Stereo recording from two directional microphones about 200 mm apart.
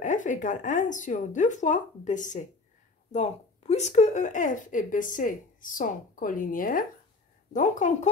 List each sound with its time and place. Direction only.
0.0 s speech: 40° left (ahead or behind)